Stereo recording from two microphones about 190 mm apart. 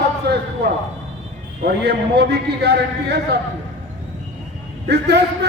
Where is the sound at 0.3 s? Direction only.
60° right (ahead or behind).